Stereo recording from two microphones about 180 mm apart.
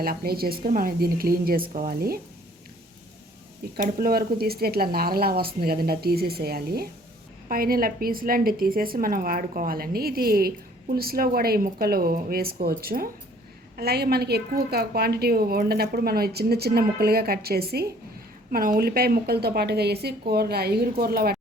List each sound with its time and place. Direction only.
0.0 s a woman's voice: 55° right (ahead or behind)
3.8 s a woman's voice: 55° right (ahead or behind)